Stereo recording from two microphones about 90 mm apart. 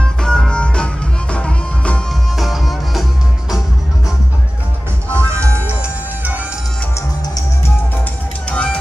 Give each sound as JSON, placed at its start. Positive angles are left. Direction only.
{"t": 0.0, "sound": "music", "side_deg": 10}
{"t": 2.3, "sound": "music", "side_deg": 0}
{"t": 5.1, "sound": "music", "side_deg": -30}
{"t": 5.7, "sound": "music", "side_deg": -15}
{"t": 8.5, "sound": "music", "side_deg": 10}